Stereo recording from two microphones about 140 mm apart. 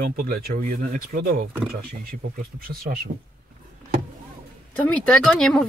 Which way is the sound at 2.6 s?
90° right.